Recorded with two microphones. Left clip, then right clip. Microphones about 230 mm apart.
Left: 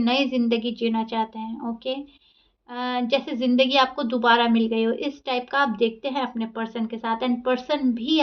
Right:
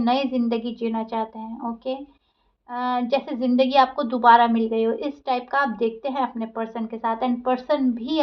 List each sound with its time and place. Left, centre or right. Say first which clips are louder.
0.0 s a woman's voice: even; left